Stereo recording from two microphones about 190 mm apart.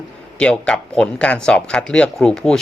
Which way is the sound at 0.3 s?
5° left (ahead or behind).